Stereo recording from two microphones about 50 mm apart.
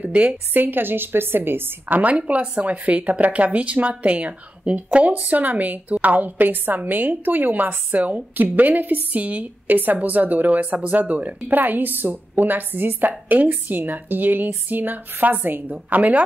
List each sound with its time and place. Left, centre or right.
0.0 s a woman's voice: right
0.5 s a woman's voice: right
2.0 s speech: right